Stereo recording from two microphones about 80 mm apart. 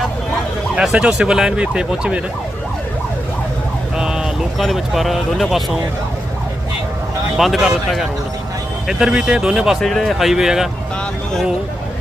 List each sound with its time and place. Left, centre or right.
0.9 s speech: centre
3.9 s speech: centre
7.3 s speech: centre